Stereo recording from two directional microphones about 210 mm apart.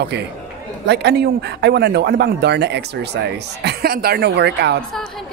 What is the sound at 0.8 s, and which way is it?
Speech, 55° right (ahead or behind).